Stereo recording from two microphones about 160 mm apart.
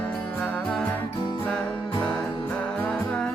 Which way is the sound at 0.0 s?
10° left (ahead or behind).